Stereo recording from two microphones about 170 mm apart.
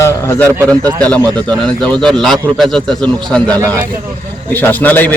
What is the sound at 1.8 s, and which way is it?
A man's voice, 5° left (ahead or behind).